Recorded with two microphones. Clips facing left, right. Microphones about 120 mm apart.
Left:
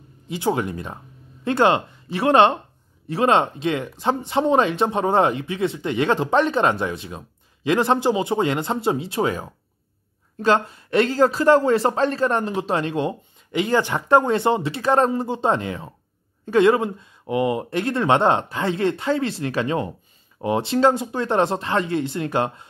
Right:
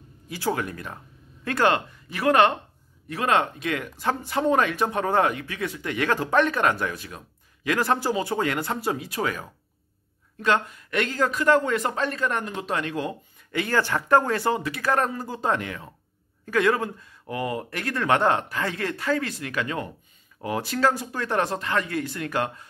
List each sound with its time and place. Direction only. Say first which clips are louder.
0.3 s speech: left 5 dB; 20° left (ahead or behind)